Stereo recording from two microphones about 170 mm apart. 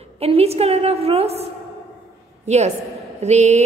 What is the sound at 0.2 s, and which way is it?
A woman's voice, 35° right (ahead or behind).